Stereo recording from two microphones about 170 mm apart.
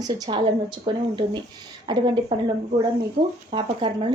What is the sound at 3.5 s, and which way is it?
Speech, 25° right (ahead or behind).